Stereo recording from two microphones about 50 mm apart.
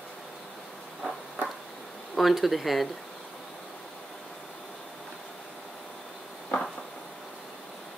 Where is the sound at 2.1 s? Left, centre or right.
Centre.